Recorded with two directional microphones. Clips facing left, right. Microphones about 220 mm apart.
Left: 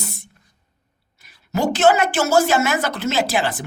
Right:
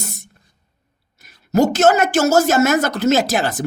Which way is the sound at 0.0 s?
45° right (ahead or behind).